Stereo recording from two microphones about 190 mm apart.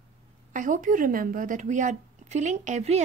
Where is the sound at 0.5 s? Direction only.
45° right (ahead or behind).